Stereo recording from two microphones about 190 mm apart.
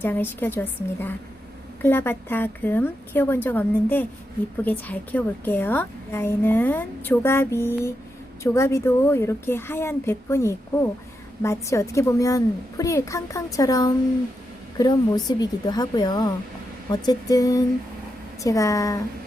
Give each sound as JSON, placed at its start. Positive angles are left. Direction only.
{"t": 0.0, "sound": "a woman's voice", "side_deg": 10}